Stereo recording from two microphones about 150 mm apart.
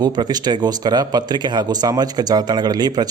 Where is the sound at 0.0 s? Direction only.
25° right (ahead or behind).